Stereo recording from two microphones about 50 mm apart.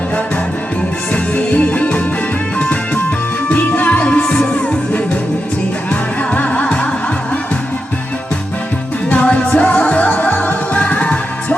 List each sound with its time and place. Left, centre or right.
1.1 s music: left
5.9 s music: left
9.0 s music: left